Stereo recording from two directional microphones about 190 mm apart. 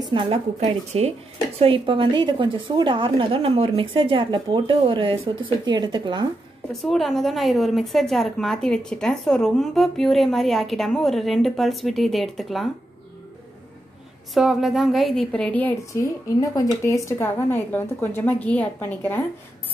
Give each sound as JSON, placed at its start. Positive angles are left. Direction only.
{"t": 0.0, "sound": "a woman's voice", "side_deg": -25}
{"t": 6.7, "sound": "a woman's voice", "side_deg": 0}
{"t": 14.3, "sound": "a woman's voice", "side_deg": 0}